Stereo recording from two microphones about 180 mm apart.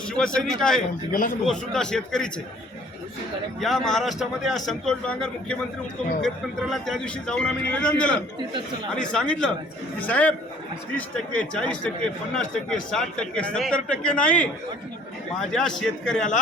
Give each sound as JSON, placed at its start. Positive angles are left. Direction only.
{"t": 0.1, "sound": "a man's voice", "side_deg": 5}
{"t": 1.1, "sound": "a man's voice", "side_deg": 50}
{"t": 1.5, "sound": "a man's voice", "side_deg": 5}
{"t": 3.6, "sound": "a man's voice", "side_deg": 0}